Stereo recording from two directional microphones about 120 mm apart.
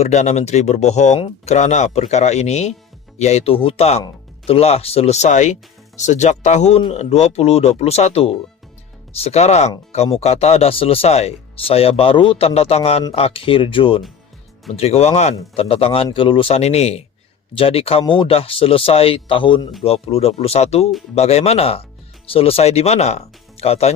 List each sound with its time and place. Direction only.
0.0 s speech: 70° left (ahead or behind); by 14.0 s 45° left (ahead or behind)
14.7 s speech: 60° left (ahead or behind)
18.0 s speech: 40° left (ahead or behind)
19.8 s speech: 55° left (ahead or behind)